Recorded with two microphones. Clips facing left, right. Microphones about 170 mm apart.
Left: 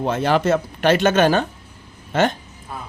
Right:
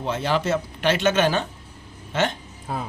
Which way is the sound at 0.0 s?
50° left (ahead or behind).